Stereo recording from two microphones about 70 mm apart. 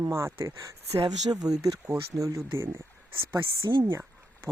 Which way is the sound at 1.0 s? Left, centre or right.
Right.